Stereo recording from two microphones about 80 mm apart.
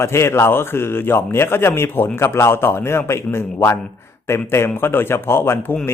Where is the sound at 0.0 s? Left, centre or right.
Left.